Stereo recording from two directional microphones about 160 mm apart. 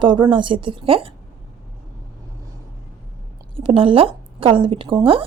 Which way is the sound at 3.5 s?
35° right (ahead or behind).